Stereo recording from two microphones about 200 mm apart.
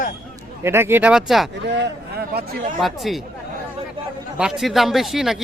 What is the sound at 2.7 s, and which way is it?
Speech, centre (ahead or behind).